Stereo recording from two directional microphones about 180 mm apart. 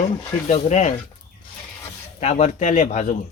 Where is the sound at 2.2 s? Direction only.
40° left (ahead or behind).